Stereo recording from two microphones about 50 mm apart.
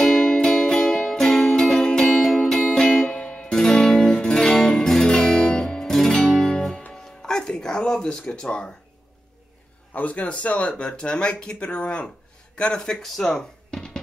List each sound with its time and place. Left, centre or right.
0.0 s music: centre
9.9 s speech: left; by 13.0 s centre
13.0 s a sound: centre